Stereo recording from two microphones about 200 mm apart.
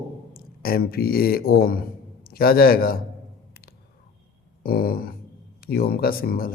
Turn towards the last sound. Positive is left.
turn(degrees=50)  # may be behind; listen again after turning